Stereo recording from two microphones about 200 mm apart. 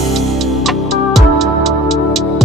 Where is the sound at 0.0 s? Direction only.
Centre (ahead or behind).